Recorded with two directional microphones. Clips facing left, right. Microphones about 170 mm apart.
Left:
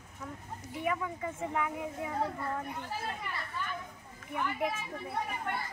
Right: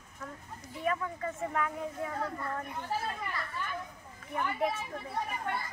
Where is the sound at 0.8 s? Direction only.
15° left (ahead or behind).